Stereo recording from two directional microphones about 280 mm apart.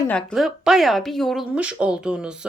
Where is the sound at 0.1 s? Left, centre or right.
Centre.